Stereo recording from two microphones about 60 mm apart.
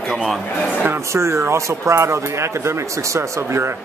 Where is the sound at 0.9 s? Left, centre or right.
Right.